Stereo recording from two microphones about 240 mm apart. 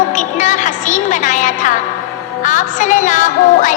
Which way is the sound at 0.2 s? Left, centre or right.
Left.